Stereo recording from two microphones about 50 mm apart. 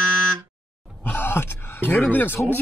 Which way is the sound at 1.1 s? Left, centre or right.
Left.